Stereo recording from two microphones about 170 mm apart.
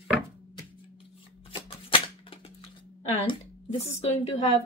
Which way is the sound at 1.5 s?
30° left (ahead or behind).